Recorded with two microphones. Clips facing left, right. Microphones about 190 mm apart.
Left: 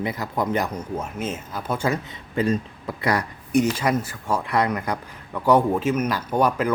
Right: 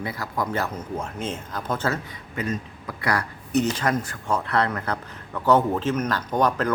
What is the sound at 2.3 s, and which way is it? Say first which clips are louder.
Speech: left 6 dB; 30° left (ahead or behind).